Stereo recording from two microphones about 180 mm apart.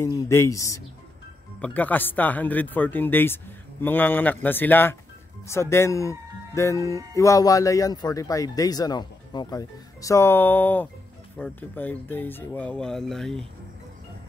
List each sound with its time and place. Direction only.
0.0 s speech: 15° left (ahead or behind)